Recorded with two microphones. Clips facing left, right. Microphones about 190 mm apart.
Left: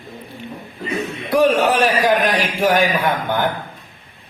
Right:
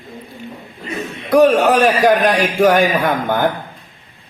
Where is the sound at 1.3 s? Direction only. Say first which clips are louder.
Right 4 dB; 45° right (ahead or behind).